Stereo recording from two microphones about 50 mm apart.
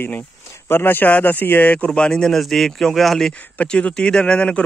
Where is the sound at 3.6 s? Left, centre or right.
Centre.